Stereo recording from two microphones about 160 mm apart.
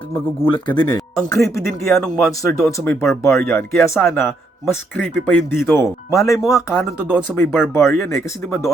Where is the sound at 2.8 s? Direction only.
15° left (ahead or behind).